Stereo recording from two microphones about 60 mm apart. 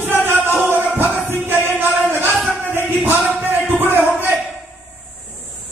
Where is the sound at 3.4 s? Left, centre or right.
Right.